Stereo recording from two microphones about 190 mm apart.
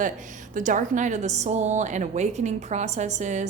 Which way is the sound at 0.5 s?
40° right (ahead or behind).